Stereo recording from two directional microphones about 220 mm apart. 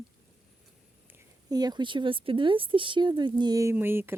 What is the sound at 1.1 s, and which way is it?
Speech, 15° right (ahead or behind).